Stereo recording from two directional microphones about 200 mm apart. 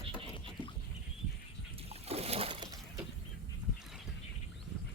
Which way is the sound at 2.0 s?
30° right (ahead or behind).